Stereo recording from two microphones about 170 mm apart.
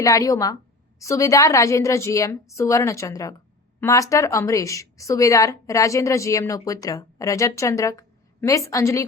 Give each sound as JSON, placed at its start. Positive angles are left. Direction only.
{"t": 0.0, "sound": "a woman's voice", "side_deg": 20}